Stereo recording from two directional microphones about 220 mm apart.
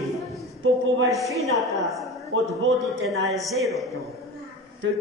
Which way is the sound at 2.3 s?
70° right (ahead or behind).